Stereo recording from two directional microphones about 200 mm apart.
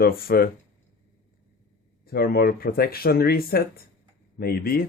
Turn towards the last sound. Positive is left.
turn(degrees=50)  # may be behind; listen again after turning